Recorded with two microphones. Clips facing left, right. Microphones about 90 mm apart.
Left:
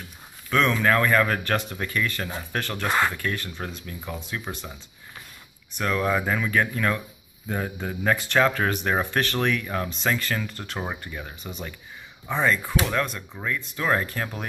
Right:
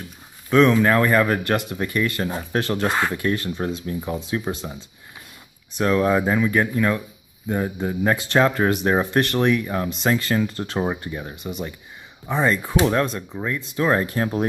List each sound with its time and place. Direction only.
0.5 s speech: 20° right (ahead or behind)
5.8 s speech: 25° right (ahead or behind)
12.4 s speech: 25° right (ahead or behind)